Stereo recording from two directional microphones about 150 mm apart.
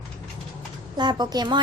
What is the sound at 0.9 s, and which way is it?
Speech, 30° right (ahead or behind).